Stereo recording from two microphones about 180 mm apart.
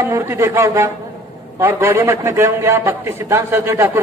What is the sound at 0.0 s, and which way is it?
A man's voice, 15° right (ahead or behind).